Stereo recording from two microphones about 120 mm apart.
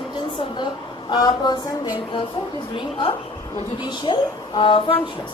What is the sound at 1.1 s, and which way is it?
Speech, 35° left (ahead or behind).